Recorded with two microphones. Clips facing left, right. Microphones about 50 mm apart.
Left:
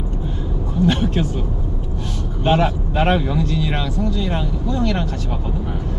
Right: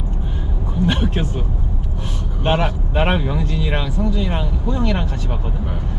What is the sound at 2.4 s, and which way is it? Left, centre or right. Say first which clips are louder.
Speech: left 2 dB; centre.